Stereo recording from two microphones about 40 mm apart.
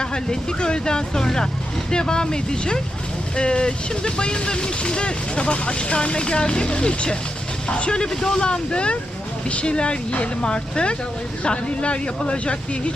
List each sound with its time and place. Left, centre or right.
0.0 s speech: centre